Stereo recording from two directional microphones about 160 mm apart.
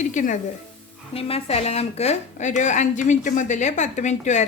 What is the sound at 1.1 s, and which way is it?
A woman's voice, 40° left (ahead or behind).